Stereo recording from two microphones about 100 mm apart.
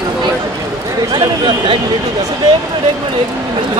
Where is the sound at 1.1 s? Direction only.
50° right (ahead or behind).